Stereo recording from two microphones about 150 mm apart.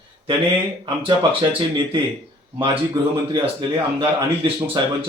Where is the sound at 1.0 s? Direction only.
30° right (ahead or behind).